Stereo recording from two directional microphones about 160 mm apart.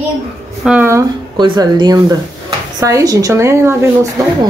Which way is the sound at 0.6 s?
5° right (ahead or behind).